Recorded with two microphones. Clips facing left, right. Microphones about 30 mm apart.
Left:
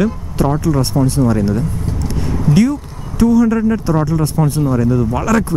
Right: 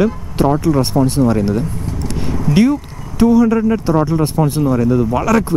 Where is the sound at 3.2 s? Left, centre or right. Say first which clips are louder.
Right 1 dB; right.